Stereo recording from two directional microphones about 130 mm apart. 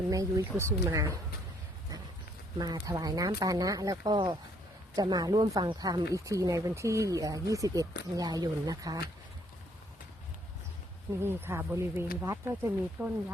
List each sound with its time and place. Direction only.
0.1 s speech: 25° right (ahead or behind)
2.6 s speech: 30° right (ahead or behind)
11.2 s speech: 20° right (ahead or behind)